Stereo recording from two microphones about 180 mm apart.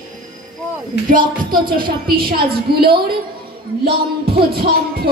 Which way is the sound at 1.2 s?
25° right (ahead or behind).